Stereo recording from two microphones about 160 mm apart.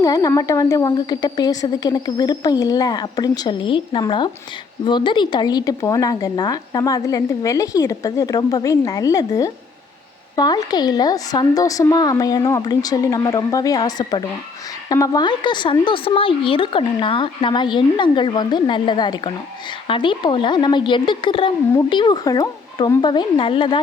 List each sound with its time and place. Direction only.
0.0 s speech: 20° left (ahead or behind)